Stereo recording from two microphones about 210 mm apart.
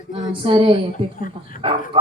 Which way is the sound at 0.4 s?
25° right (ahead or behind).